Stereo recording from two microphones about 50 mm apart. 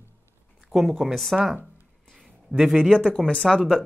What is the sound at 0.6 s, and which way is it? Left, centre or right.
Speech, centre.